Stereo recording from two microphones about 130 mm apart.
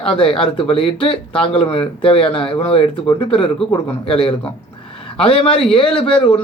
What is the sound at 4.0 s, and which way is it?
A man's voice, 45° left (ahead or behind).